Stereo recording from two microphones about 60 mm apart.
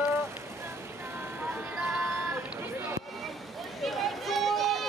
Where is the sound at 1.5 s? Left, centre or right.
Right.